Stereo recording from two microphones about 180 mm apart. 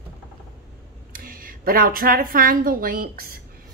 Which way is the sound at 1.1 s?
50° right (ahead or behind).